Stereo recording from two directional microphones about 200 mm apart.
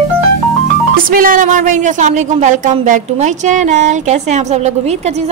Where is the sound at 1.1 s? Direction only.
45° right (ahead or behind).